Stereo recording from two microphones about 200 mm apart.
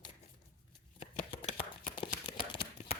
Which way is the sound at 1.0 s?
30° left (ahead or behind).